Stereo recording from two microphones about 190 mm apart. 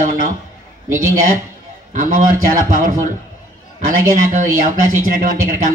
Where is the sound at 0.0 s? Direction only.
45° right (ahead or behind).